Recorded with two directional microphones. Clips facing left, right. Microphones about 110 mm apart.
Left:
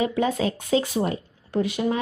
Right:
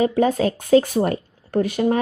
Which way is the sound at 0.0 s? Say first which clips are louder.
Right 5 dB; 40° right (ahead or behind).